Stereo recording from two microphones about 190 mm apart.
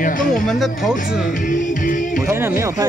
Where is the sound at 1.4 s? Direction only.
40° left (ahead or behind).